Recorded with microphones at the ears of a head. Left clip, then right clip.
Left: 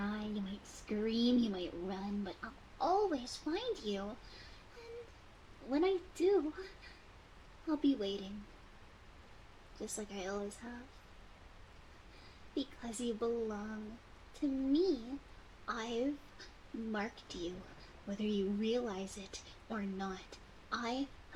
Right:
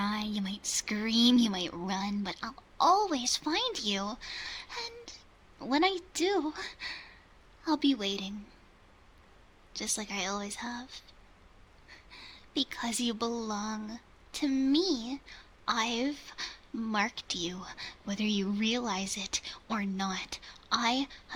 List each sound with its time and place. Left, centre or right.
0.0 s speech: right
9.7 s speech: right